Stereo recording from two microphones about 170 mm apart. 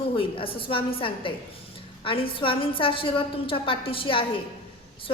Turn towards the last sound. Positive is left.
turn(degrees=30)  # may be behind; listen again after turning